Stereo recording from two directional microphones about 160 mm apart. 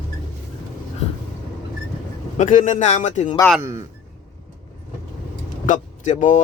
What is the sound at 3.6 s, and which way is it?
Speech, 20° right (ahead or behind).